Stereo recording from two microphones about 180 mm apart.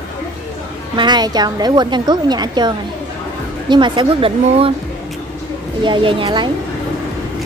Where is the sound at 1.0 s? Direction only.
25° right (ahead or behind).